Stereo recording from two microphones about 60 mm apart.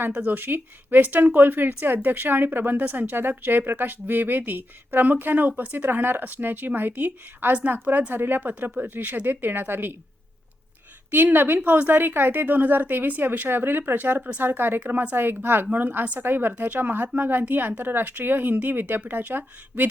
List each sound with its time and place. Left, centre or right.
0.0 s speech: right
11.1 s speech: right